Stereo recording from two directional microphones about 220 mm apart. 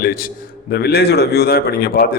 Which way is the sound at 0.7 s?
45° left (ahead or behind).